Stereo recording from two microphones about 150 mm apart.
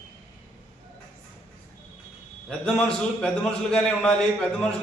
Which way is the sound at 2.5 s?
5° left (ahead or behind).